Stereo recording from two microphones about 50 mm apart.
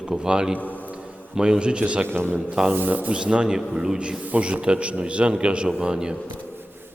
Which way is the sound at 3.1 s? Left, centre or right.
Right.